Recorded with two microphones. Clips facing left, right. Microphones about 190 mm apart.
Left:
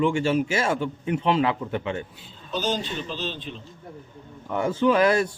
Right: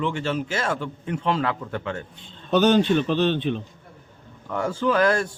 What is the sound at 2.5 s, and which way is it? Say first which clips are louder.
A man's voice: right 10 dB; 65° right (ahead or behind).